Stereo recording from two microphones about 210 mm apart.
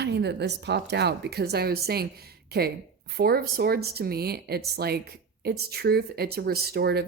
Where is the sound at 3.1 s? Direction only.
45° right (ahead or behind).